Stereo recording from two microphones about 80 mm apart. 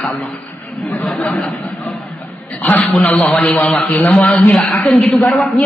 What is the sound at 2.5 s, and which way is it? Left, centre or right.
Speech, centre.